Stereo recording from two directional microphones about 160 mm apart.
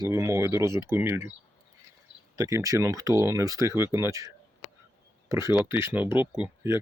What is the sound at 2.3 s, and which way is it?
Speech, 20° right (ahead or behind).